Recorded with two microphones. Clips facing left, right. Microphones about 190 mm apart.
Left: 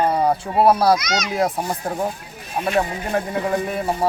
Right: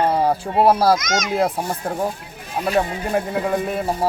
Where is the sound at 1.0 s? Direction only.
50° right (ahead or behind).